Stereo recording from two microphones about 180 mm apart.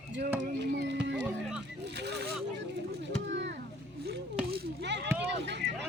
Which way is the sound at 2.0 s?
65° right (ahead or behind).